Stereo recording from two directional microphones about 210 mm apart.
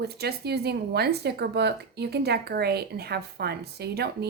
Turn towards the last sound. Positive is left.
turn(degrees=-50)  # may be behind; listen again after turning